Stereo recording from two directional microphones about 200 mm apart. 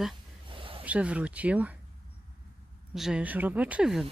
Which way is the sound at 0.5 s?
25° right (ahead or behind).